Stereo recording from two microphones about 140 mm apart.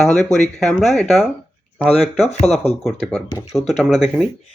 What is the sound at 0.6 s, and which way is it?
Speech, 5° left (ahead or behind).